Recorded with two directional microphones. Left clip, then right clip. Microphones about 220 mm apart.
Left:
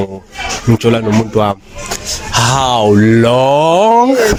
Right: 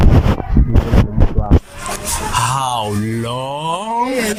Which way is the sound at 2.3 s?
45° left (ahead or behind).